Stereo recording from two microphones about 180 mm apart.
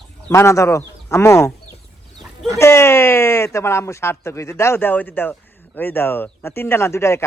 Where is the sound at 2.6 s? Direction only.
15° left (ahead or behind).